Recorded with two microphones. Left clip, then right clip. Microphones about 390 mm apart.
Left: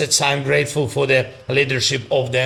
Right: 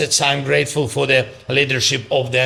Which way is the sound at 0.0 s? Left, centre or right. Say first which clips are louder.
Right 1 dB; left.